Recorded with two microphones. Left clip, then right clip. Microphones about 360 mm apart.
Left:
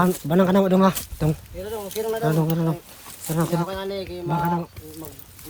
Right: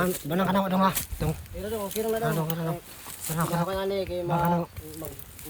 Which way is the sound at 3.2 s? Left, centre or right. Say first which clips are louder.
Left 5 dB; centre.